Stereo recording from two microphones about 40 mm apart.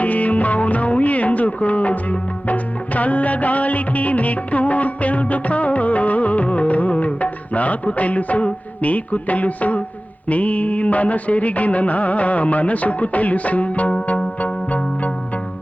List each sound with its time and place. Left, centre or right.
0.0 s music: left